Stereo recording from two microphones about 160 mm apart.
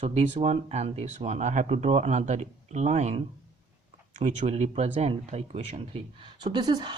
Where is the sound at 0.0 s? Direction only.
45° right (ahead or behind).